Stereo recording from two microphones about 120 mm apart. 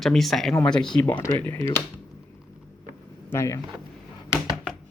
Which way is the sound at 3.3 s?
25° left (ahead or behind).